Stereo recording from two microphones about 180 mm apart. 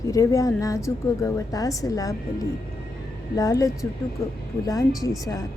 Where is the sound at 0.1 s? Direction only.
20° left (ahead or behind).